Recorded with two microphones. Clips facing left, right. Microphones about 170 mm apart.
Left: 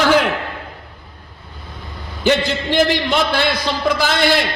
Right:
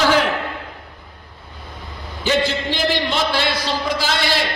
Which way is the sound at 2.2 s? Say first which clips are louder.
Left 3 dB; 60° left (ahead or behind).